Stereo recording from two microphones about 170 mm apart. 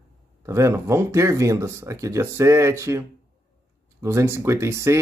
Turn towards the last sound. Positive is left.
turn(degrees=-15)  # may be behind; listen again after turning